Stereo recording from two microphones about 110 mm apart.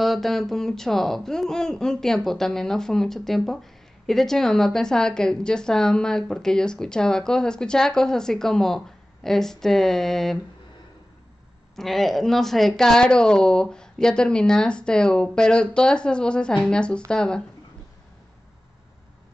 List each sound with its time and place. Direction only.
0.0 s speech: centre (ahead or behind)
11.7 s a woman's voice: centre (ahead or behind)